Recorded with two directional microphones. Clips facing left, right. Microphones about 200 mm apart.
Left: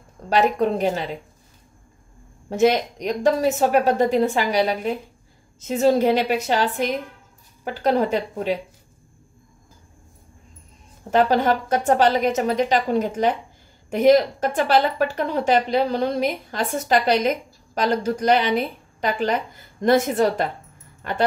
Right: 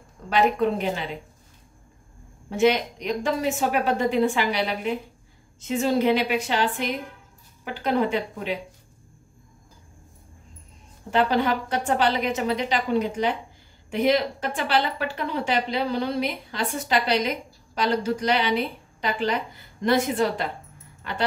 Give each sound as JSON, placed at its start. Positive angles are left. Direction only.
{"t": 0.3, "sound": "a woman's voice", "side_deg": 40}
{"t": 2.5, "sound": "a woman's voice", "side_deg": 40}
{"t": 11.1, "sound": "a woman's voice", "side_deg": 45}